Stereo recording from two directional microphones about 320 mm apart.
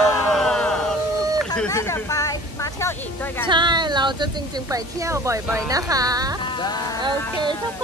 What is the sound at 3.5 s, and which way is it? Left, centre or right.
Speech, centre.